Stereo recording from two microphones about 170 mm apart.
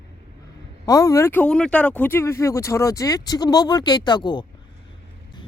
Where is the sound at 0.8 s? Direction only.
20° left (ahead or behind).